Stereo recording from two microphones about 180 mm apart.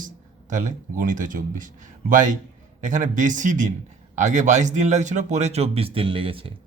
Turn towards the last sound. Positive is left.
turn(degrees=-30)  # may be behind; listen again after turning